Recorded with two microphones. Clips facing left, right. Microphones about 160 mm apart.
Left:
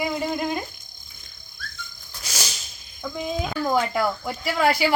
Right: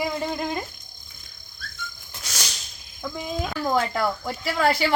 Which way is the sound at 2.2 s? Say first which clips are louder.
Left 2 dB; centre (ahead or behind).